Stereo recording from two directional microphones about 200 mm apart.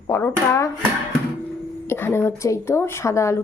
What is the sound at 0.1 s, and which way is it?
Speech, 10° left (ahead or behind).